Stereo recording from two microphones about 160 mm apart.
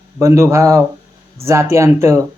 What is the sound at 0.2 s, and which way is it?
Speech, 20° right (ahead or behind).